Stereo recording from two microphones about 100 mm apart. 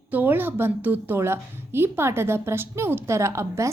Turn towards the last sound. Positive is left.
turn(degrees=-30)  # may be behind; listen again after turning